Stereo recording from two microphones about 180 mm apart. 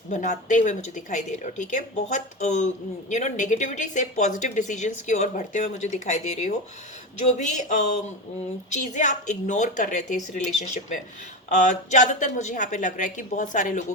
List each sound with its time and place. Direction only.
0.1 s speech: 45° left (ahead or behind)